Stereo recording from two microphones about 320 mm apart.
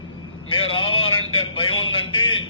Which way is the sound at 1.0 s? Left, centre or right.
Left.